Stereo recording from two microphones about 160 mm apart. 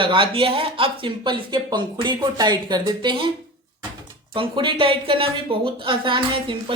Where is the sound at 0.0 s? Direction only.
35° right (ahead or behind).